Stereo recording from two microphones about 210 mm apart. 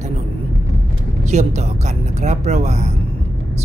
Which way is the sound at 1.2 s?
30° right (ahead or behind).